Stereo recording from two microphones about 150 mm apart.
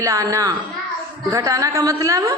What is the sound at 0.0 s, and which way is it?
A woman's voice, 20° right (ahead or behind).